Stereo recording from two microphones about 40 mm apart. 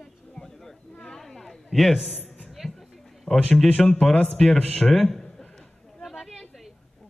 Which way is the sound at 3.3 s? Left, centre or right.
Left.